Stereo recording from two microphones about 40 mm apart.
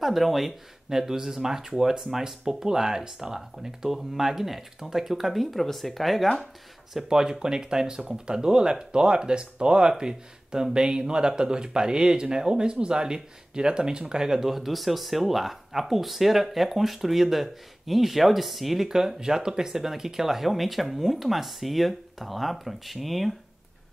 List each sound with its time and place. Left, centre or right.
0.0 s speech: centre
0.8 s speech: centre
6.9 s speech: centre